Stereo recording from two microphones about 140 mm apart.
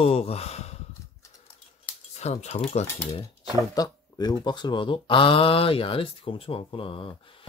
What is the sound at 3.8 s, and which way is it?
Speech, 30° left (ahead or behind).